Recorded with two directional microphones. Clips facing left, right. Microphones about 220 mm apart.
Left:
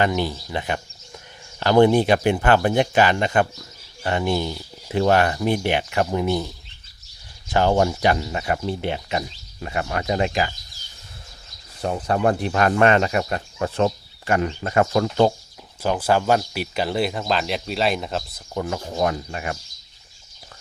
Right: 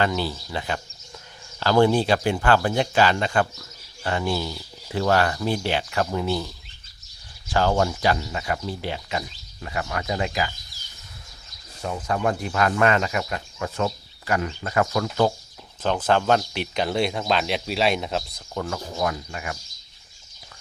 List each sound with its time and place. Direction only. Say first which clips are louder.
0.0 s speech: left 2 dB; 15° left (ahead or behind)
7.5 s speech: left 3 dB; 20° left (ahead or behind)
11.8 s speech: left 4 dB; 35° left (ahead or behind)
12.8 s speech: left 4 dB; 25° left (ahead or behind)
13.1 s speech: left 4 dB; 35° left (ahead or behind)
15.8 s speech: left 1 dB; 10° left (ahead or behind)
18.5 s speech: left 3 dB; 20° left (ahead or behind)
18.9 s speech: left 5 dB; 35° left (ahead or behind)